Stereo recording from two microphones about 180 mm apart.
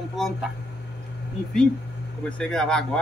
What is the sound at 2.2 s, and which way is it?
Speech, 5° left (ahead or behind).